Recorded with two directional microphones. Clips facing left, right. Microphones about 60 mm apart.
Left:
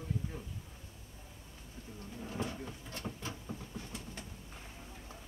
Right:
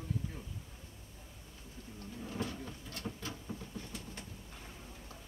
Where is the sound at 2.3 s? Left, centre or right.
Left.